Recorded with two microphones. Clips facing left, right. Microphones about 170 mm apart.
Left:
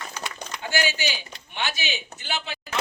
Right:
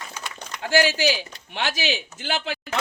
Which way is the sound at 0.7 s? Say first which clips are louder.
Right 7 dB; 90° right.